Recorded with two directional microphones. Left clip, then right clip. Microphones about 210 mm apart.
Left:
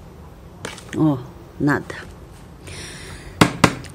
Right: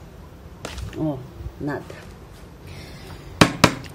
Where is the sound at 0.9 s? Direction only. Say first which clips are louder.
Left 8 dB; 40° left (ahead or behind).